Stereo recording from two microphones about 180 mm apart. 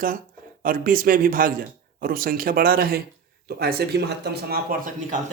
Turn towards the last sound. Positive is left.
turn(degrees=-50)  # may be behind; listen again after turning